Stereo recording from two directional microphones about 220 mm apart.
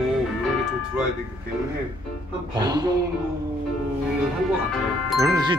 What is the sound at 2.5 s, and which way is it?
Speech, 20° right (ahead or behind).